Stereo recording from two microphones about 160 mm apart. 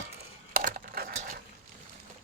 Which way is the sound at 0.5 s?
65° right (ahead or behind).